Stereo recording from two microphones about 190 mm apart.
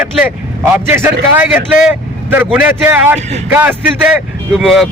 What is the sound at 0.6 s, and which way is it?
Speech, 15° right (ahead or behind).